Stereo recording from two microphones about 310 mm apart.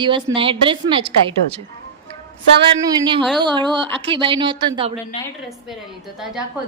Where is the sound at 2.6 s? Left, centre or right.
Centre.